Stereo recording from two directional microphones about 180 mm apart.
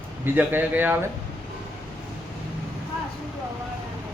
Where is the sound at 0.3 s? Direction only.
10° right (ahead or behind).